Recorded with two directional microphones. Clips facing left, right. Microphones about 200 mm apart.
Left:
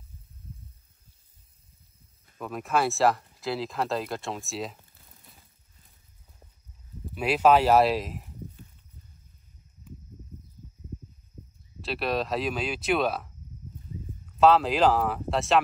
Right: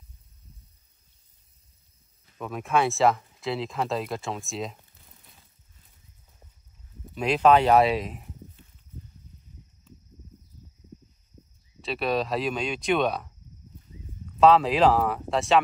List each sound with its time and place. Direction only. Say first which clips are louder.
2.3 s speech: right 2 dB; centre (ahead or behind)
7.1 s speech: right 1 dB; 5° left (ahead or behind)
11.8 s speech: right 2 dB; centre (ahead or behind)
14.4 s speech: right 2 dB; centre (ahead or behind)